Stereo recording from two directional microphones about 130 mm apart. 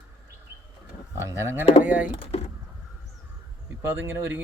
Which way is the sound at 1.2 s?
20° right (ahead or behind).